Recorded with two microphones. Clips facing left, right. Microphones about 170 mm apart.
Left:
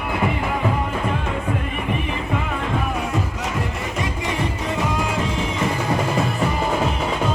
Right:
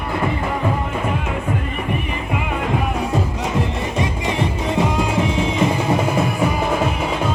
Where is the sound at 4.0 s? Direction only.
25° right (ahead or behind).